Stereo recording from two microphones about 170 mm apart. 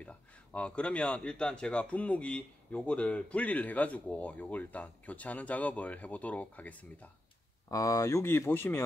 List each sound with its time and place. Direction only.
0.0 s speech: 5° left (ahead or behind)
7.7 s speech: 20° left (ahead or behind)